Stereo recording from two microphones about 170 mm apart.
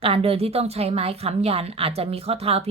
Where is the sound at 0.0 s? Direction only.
35° right (ahead or behind).